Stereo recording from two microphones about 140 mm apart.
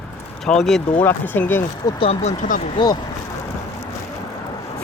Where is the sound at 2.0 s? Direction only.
50° left (ahead or behind); by 2.7 s 65° left (ahead or behind).